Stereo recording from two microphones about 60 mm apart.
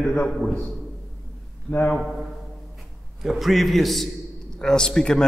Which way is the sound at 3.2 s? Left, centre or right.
Centre.